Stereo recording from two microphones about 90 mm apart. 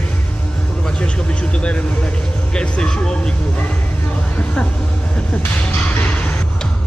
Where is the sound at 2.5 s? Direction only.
10° left (ahead or behind).